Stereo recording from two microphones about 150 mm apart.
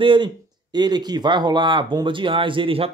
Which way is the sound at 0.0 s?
30° right (ahead or behind).